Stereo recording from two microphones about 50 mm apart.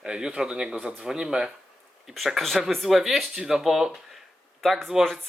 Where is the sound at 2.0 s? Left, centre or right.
Centre.